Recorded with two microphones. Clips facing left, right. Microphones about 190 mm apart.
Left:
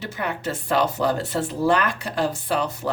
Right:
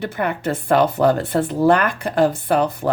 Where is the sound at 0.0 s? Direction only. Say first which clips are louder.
Right 6 dB; 55° right (ahead or behind).